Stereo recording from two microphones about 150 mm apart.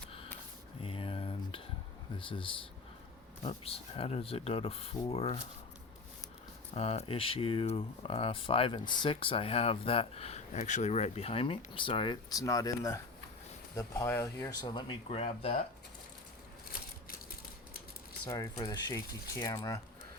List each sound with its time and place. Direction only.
0.8 s a sound: 35° left (ahead or behind)
2.1 s speech: 35° left (ahead or behind)
6.7 s speech: 40° left (ahead or behind)
12.3 s speech: 25° left (ahead or behind)
14.5 s speech: 30° left (ahead or behind)
18.3 s speech: 20° left (ahead or behind)